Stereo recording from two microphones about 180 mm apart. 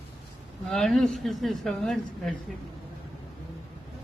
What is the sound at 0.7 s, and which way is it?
A man's voice, centre (ahead or behind).